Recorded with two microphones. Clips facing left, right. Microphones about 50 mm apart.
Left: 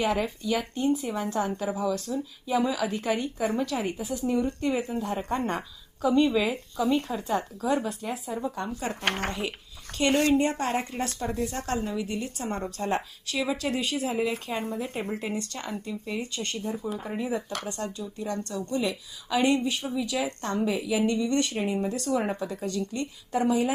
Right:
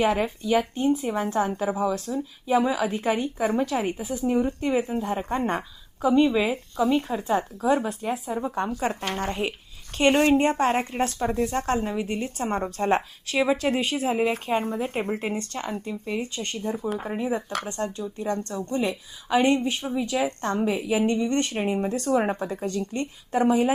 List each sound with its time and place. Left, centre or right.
0.0 s a woman's voice: right
17.1 s speech: centre
17.7 s a woman's voice: right